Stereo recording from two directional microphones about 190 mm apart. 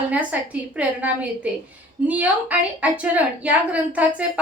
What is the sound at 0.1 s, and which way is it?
A woman's voice, 5° right (ahead or behind).